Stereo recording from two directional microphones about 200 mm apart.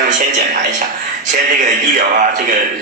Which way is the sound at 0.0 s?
40° right (ahead or behind).